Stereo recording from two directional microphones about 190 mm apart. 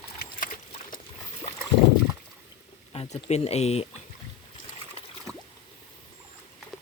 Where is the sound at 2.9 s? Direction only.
30° left (ahead or behind).